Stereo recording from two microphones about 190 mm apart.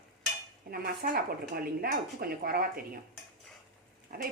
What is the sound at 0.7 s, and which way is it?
A woman's voice, 55° right (ahead or behind).